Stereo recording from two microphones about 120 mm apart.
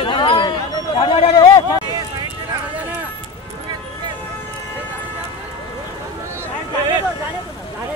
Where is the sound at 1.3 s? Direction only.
35° left (ahead or behind).